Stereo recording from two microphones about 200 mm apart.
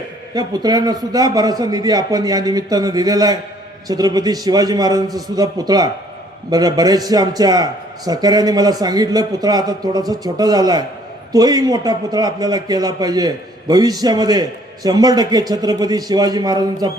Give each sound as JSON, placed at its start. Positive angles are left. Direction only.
{"t": 0.3, "sound": "a man's voice", "side_deg": -20}